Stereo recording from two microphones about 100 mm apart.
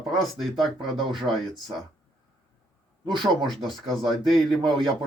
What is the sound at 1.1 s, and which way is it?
Speech, 55° right (ahead or behind).